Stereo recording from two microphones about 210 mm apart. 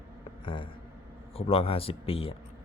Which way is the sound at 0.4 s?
25° left (ahead or behind).